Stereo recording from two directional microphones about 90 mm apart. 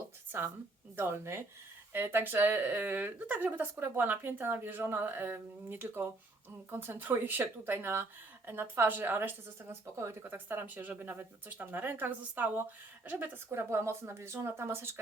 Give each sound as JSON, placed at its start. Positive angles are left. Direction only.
{"t": 0.3, "sound": "a woman's voice", "side_deg": -25}